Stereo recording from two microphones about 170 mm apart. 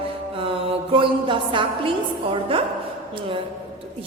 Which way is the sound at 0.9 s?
30° right (ahead or behind).